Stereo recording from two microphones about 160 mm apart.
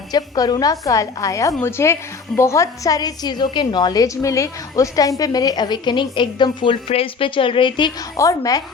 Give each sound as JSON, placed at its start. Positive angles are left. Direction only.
{"t": 0.1, "sound": "a woman's voice", "side_deg": 25}